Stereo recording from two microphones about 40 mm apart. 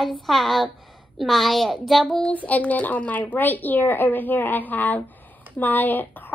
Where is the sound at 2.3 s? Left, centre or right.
Left.